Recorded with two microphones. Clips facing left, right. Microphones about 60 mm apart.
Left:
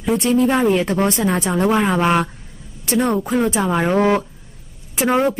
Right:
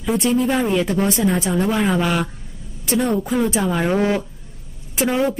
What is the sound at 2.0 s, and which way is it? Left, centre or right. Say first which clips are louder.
Speech: left 3 dB; left.